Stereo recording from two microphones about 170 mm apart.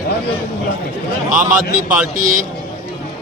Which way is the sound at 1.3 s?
50° right (ahead or behind).